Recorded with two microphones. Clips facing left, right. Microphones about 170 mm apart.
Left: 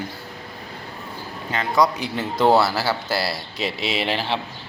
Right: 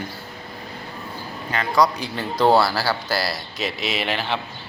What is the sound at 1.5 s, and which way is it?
A man's voice, 20° left (ahead or behind).